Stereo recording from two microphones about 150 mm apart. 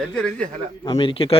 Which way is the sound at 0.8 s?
30° left (ahead or behind).